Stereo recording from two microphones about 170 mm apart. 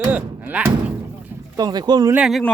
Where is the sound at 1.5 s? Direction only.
25° right (ahead or behind).